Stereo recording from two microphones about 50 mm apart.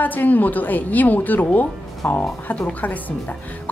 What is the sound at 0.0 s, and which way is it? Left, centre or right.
A woman's voice, left.